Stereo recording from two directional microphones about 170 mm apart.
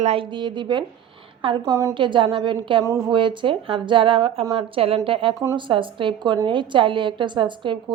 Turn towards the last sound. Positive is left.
turn(degrees=-30)  # may be behind; listen again after turning